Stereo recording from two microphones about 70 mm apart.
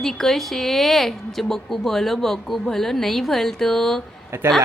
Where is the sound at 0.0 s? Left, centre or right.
Centre.